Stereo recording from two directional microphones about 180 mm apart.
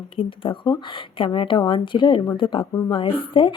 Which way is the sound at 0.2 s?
30° left (ahead or behind).